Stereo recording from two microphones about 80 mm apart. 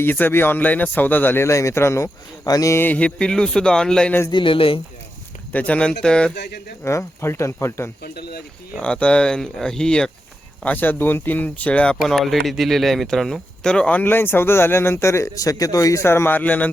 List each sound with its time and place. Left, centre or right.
0.0 s speech: left
2.7 s speech: left
3.0 s speech: centre
4.3 s speech: left
5.5 s speech: centre
6.8 s speech: left
8.8 s speech: centre
10.6 s speech: left